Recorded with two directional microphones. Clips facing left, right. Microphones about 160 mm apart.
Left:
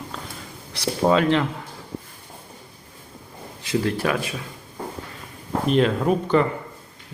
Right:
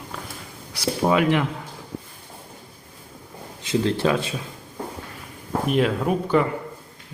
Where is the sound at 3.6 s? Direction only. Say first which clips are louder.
Right 2 dB; 25° right (ahead or behind).